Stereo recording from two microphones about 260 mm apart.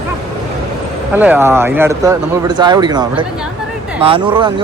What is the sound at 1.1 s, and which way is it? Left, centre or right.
Speech, centre.